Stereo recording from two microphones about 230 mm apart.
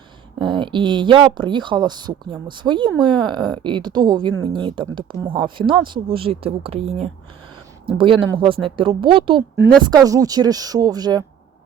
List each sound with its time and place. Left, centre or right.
0.3 s speech: right